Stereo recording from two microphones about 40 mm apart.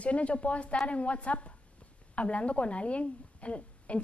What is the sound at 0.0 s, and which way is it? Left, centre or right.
A woman's voice, left.